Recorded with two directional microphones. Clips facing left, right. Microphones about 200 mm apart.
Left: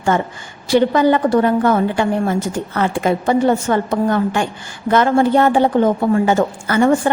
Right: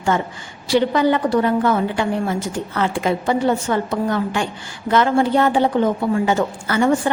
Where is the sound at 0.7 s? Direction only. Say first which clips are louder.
Left 3 dB; 50° left (ahead or behind).